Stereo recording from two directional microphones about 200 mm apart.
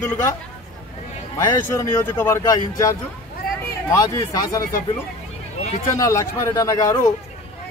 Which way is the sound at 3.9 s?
15° left (ahead or behind).